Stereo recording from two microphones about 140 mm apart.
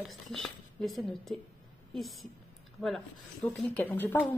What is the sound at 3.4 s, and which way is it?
Speech, 10° left (ahead or behind).